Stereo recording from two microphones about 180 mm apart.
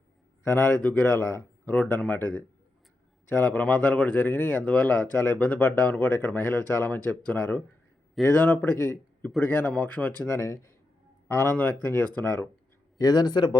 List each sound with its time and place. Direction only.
0.4 s speech: 15° left (ahead or behind)
13.0 s speech: 20° left (ahead or behind)